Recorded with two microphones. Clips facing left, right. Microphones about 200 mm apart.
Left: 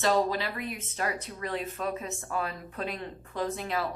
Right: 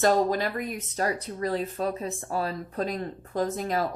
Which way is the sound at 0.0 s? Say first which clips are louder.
Right 4 dB; 45° right (ahead or behind).